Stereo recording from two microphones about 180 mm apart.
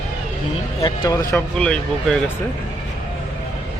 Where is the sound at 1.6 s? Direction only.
5° left (ahead or behind).